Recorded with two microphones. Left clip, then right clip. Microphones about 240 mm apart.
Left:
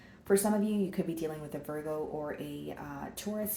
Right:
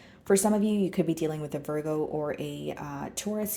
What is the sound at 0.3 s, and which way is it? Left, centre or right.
Speech, right.